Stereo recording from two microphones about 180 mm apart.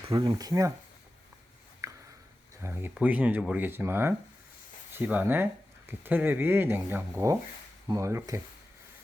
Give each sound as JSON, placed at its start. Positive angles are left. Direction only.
{"t": 0.1, "sound": "speech", "side_deg": -25}
{"t": 1.8, "sound": "a sound", "side_deg": -20}
{"t": 2.6, "sound": "speech", "side_deg": -15}